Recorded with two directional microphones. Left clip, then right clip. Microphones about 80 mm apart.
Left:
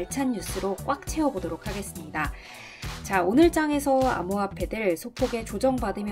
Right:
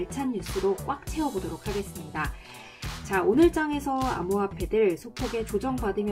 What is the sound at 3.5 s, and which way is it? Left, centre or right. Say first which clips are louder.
Speech: left 2 dB; centre.